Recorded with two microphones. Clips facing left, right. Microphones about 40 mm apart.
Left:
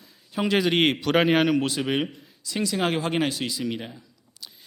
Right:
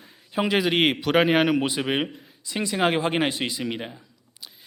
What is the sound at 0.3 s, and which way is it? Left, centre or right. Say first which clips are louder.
A man's voice: even; centre.